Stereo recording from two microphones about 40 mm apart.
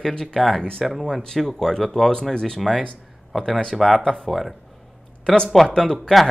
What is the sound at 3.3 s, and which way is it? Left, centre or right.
Speech, centre.